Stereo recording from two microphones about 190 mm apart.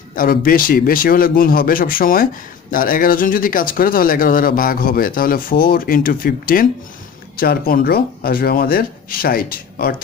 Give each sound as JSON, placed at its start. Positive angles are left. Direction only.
{"t": 0.1, "sound": "speech", "side_deg": 50}